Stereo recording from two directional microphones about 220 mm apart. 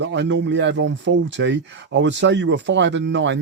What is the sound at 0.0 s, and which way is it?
Speech, 55° right (ahead or behind).